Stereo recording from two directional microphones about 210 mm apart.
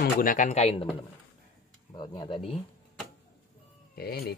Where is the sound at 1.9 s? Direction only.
20° left (ahead or behind).